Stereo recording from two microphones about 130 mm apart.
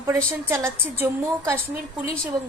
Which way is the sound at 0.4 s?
20° right (ahead or behind).